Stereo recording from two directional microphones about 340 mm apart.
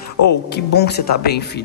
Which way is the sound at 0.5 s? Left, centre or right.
Left.